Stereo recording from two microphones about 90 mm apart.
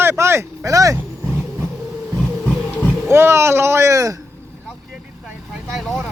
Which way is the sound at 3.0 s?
30° right (ahead or behind).